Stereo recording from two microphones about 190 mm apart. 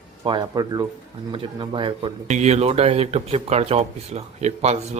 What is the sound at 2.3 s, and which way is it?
Speech, 35° right (ahead or behind).